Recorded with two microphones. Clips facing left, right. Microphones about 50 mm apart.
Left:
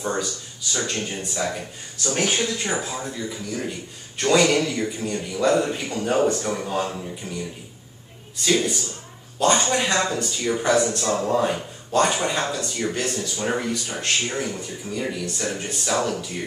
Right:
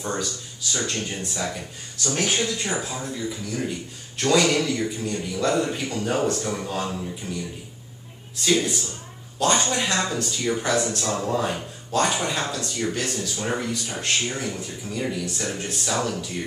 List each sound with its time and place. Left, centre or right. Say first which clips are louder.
0.0 s speech: left 2 dB; centre
2.1 s speech: left 1 dB; centre
8.4 s speech: left 1 dB; centre